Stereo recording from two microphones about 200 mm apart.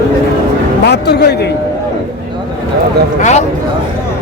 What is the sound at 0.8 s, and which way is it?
Speech, 55° left (ahead or behind).